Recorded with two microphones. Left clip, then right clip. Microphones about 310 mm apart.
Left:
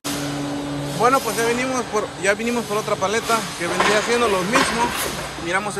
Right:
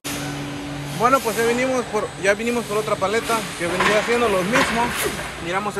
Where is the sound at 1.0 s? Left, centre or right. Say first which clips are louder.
Even; centre.